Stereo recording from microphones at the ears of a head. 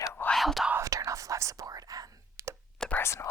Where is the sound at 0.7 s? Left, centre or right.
Right.